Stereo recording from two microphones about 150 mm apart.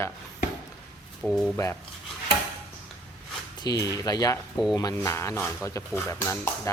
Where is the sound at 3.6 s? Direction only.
25° left (ahead or behind).